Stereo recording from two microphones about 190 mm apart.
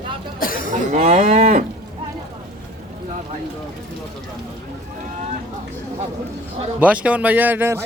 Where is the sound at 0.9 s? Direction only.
35° right (ahead or behind).